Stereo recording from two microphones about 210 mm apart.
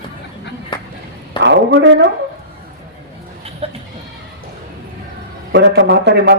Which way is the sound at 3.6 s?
30° right (ahead or behind).